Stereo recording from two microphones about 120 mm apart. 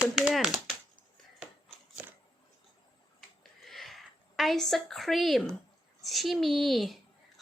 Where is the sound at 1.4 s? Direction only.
10° right (ahead or behind).